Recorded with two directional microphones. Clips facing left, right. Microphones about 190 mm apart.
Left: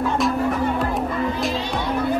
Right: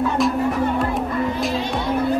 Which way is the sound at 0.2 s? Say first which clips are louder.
Right 3 dB; centre (ahead or behind).